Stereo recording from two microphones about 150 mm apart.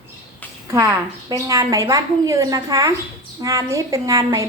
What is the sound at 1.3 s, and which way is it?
A woman's voice, 25° right (ahead or behind).